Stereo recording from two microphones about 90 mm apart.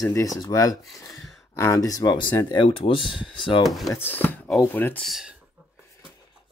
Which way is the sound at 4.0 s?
20° left (ahead or behind).